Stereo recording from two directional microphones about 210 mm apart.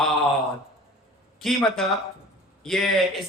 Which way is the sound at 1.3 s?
Centre (ahead or behind).